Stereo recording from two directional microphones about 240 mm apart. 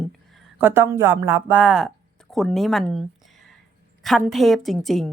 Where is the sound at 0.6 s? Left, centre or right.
Centre.